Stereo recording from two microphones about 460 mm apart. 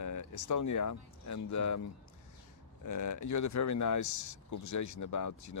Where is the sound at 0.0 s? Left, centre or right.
Left.